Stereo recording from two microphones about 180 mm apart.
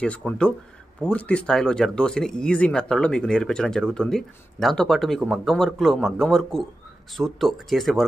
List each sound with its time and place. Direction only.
0.0 s speech: 5° left (ahead or behind)